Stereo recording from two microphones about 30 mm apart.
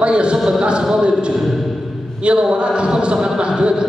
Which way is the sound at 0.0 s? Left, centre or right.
Right.